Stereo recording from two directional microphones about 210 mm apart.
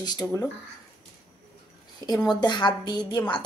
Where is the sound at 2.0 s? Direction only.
20° left (ahead or behind).